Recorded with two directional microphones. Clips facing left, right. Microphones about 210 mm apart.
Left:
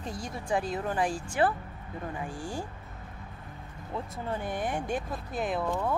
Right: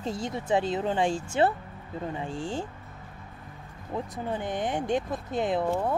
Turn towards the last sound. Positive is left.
turn(degrees=-25)  # may be behind; listen again after turning